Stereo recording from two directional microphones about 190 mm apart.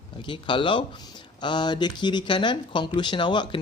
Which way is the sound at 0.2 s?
25° left (ahead or behind).